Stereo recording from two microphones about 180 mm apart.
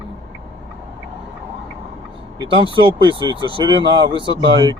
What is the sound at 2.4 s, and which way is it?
Speech, 25° right (ahead or behind).